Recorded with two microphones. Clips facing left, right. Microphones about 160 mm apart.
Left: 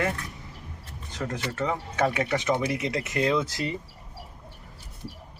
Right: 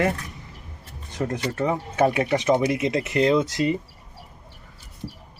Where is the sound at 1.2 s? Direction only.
30° right (ahead or behind).